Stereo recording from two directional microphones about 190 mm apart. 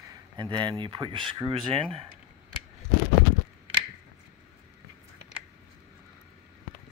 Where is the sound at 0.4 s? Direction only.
25° right (ahead or behind).